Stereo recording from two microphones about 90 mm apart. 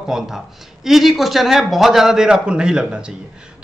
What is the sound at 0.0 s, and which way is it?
Speech, 5° right (ahead or behind).